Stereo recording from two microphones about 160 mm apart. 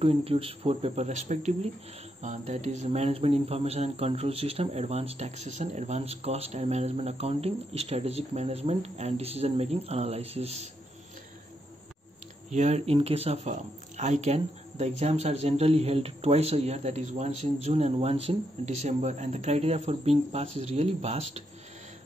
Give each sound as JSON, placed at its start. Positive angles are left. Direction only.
{"t": 0.0, "sound": "speech", "side_deg": -35}
{"t": 12.4, "sound": "speech", "side_deg": -45}